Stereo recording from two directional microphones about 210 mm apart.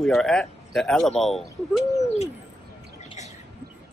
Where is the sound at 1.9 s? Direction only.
30° left (ahead or behind).